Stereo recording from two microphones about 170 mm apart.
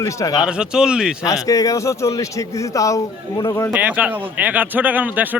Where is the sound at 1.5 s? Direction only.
20° left (ahead or behind).